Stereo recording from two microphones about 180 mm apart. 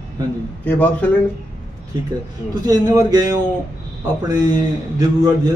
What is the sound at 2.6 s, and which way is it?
Speech, 20° right (ahead or behind).